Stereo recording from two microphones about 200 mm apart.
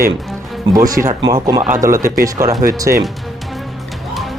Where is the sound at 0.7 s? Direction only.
15° right (ahead or behind).